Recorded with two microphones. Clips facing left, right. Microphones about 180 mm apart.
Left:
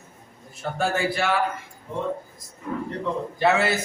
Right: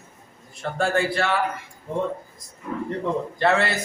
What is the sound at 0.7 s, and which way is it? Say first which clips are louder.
Speech: right 2 dB; 5° left (ahead or behind).